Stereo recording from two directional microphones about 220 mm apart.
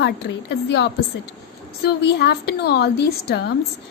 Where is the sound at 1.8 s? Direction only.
50° left (ahead or behind).